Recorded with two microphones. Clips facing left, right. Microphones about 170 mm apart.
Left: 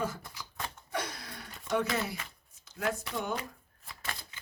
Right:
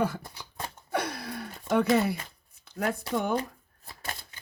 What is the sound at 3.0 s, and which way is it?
Speech, 50° right (ahead or behind).